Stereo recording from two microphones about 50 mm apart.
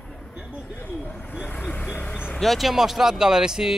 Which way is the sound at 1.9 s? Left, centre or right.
Left.